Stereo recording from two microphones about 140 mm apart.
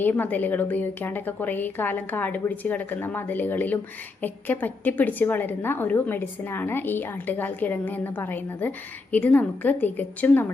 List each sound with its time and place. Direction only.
0.0 s a woman's voice: 15° left (ahead or behind)